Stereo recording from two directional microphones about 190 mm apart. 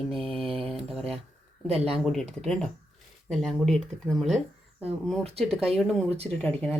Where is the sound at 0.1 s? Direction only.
Centre (ahead or behind).